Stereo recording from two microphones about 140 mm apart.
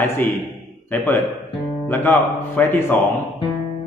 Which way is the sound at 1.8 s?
15° left (ahead or behind).